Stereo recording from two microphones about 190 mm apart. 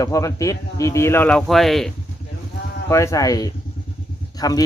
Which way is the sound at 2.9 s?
15° left (ahead or behind).